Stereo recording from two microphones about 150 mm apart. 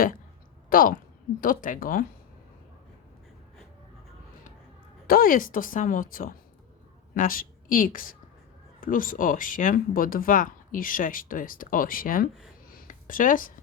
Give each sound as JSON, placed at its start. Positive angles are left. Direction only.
{"t": 0.7, "sound": "speech", "side_deg": 70}
{"t": 5.0, "sound": "a woman's voice", "side_deg": 75}
{"t": 12.6, "sound": "a sound", "side_deg": 70}